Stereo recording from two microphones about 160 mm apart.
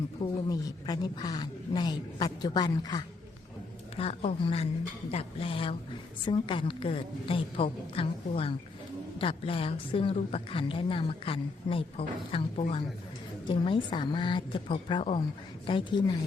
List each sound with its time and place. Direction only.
0.2 s speech: 25° left (ahead or behind)
3.9 s a woman's voice: 40° left (ahead or behind)